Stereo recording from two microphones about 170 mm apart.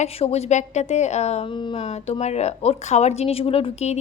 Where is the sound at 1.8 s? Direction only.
40° left (ahead or behind).